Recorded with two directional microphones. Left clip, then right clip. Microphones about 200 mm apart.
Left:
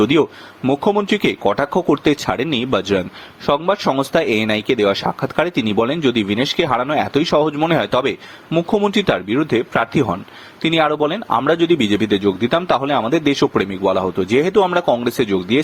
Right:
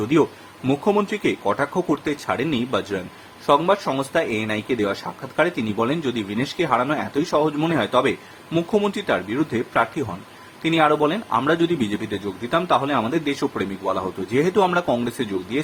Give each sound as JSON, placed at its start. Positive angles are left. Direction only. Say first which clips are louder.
{"t": 0.0, "sound": "speech", "louder": "left 5 dB", "side_deg": 35}